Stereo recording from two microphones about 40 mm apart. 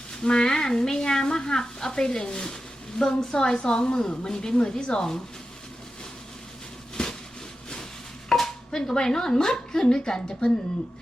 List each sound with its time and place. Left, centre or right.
0.1 s a woman's voice: centre
6.9 s a sound: centre
8.4 s speech: centre